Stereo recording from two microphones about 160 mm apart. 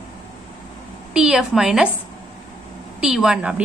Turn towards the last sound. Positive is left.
turn(degrees=-5)  # may be behind; listen again after turning